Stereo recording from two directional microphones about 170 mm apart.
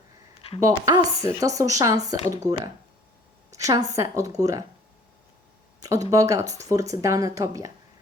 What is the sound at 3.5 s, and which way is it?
A woman's voice, 20° right (ahead or behind).